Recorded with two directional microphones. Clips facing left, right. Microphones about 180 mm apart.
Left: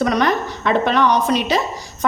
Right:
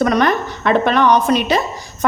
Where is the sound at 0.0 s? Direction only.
55° right (ahead or behind).